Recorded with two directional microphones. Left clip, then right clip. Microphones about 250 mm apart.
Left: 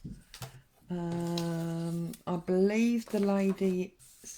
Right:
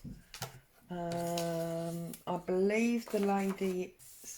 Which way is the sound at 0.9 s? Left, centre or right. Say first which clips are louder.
Even; left.